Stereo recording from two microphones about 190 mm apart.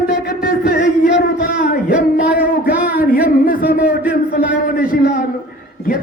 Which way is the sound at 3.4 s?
50° left (ahead or behind).